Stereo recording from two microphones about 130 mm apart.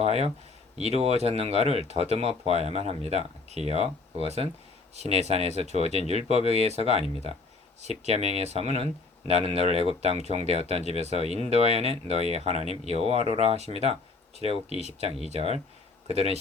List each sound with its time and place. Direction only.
0.0 s speech: 50° right (ahead or behind)
6.0 s speech: 55° left (ahead or behind)
6.5 s speech: 55° right (ahead or behind)